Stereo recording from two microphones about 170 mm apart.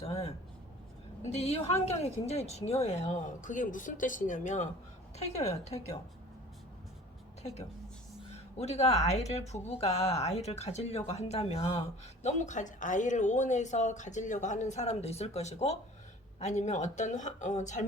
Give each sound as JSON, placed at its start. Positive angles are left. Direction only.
{"t": 0.0, "sound": "speech", "side_deg": 35}
{"t": 8.5, "sound": "speech", "side_deg": 40}